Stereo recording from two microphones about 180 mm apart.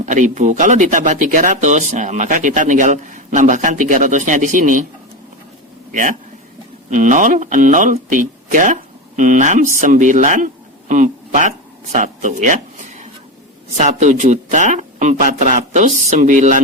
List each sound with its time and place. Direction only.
0.0 s speech: 45° right (ahead or behind)
5.9 s a man's voice: 45° right (ahead or behind)